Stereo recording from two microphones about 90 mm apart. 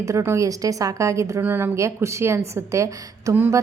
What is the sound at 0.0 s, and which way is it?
A woman's voice, 30° right (ahead or behind).